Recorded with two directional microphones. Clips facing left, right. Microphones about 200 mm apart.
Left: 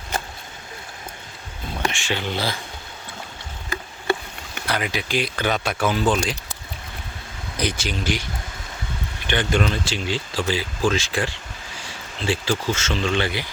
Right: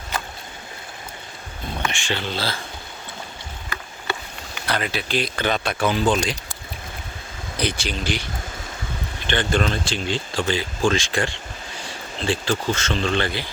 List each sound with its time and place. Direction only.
1.9 s speech: centre (ahead or behind)
2.1 s speech: 15° left (ahead or behind)
4.6 s speech: 10° left (ahead or behind)
7.5 s speech: 10° left (ahead or behind)